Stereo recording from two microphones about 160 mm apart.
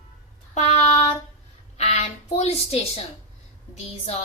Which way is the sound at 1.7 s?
40° left (ahead or behind).